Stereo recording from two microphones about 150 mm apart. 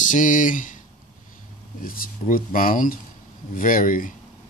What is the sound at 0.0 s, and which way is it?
Speech, 60° left (ahead or behind).